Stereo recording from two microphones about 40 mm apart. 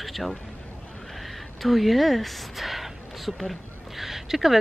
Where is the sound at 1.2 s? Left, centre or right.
Centre.